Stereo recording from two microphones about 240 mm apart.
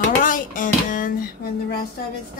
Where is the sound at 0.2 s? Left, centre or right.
Left.